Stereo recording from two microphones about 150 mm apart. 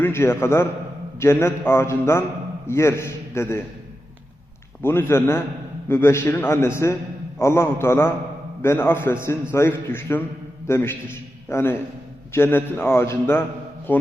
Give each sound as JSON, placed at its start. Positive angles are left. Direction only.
{"t": 0.0, "sound": "a man's voice", "side_deg": 15}
{"t": 4.8, "sound": "a man's voice", "side_deg": 15}